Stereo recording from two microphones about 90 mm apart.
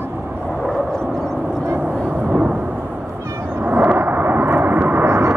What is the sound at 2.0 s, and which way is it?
Thunder, 15° right (ahead or behind).